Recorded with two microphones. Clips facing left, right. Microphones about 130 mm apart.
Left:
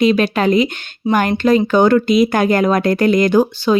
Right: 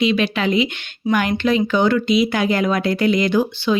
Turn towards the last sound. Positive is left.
turn(degrees=45)  # may be behind; listen again after turning